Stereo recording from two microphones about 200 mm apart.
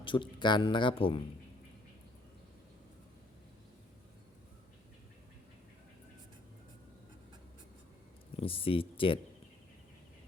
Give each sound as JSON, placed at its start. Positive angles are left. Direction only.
{"t": 0.0, "sound": "speech", "side_deg": 25}
{"t": 8.4, "sound": "speech", "side_deg": 25}